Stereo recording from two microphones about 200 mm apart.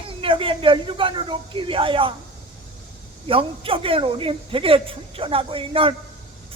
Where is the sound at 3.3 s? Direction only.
25° right (ahead or behind).